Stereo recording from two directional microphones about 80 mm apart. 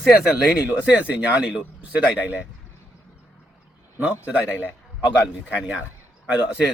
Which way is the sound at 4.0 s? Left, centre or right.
Centre.